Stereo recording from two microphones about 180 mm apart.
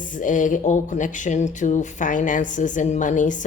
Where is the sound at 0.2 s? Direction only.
45° left (ahead or behind).